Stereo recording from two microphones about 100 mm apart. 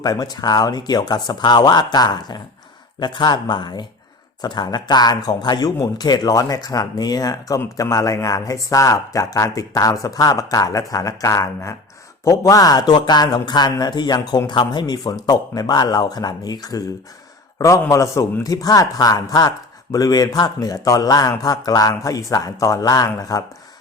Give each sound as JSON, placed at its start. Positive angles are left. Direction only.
{"t": 0.0, "sound": "speech", "side_deg": 45}